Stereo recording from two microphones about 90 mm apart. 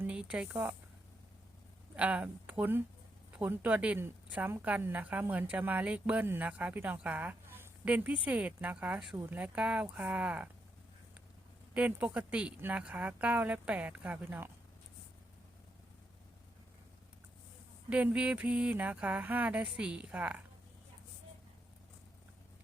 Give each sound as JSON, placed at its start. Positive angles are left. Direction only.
{"t": 0.1, "sound": "speech", "side_deg": -10}
{"t": 2.0, "sound": "a woman's voice", "side_deg": -15}
{"t": 11.7, "sound": "a woman's voice", "side_deg": -15}
{"t": 17.8, "sound": "speech", "side_deg": -15}